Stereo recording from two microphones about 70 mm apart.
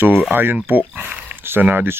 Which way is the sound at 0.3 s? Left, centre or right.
Right.